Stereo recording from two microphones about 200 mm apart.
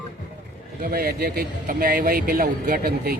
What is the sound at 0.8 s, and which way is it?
Speech, 45° right (ahead or behind).